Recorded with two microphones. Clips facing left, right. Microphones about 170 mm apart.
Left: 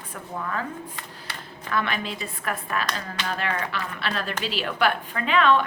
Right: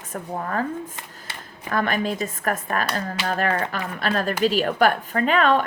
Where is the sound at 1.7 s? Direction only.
45° right (ahead or behind).